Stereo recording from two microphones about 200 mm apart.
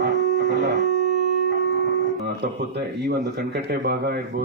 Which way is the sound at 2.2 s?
55° right (ahead or behind).